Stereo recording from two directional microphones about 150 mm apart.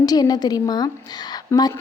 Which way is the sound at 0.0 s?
25° left (ahead or behind).